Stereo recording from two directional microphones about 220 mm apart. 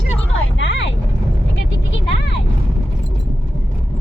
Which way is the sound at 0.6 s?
55° left (ahead or behind).